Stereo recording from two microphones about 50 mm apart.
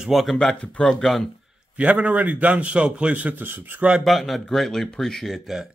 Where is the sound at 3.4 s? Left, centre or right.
Right.